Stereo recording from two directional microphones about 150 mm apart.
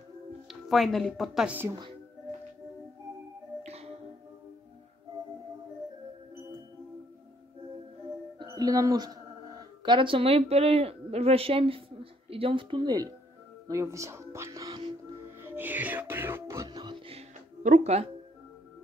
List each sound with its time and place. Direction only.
0.5 s speech: centre (ahead or behind)
3.6 s music: 45° right (ahead or behind)
8.4 s a sound: 25° right (ahead or behind)
9.8 s a woman's voice: 35° right (ahead or behind)
15.4 s music: 15° right (ahead or behind); by 17.2 s 35° right (ahead or behind)
17.6 s speech: 50° right (ahead or behind)